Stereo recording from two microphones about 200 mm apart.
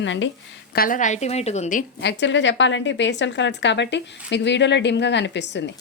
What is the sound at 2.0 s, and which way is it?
Speech, 65° left (ahead or behind).